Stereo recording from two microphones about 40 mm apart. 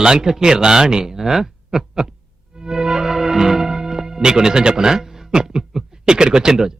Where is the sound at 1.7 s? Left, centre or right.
Centre.